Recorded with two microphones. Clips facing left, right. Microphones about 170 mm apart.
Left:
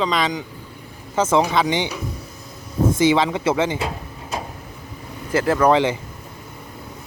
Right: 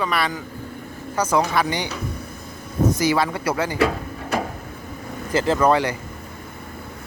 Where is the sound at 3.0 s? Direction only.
20° left (ahead or behind).